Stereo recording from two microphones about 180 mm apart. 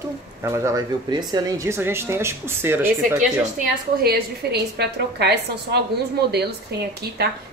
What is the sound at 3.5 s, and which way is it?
A woman's voice, 60° right (ahead or behind).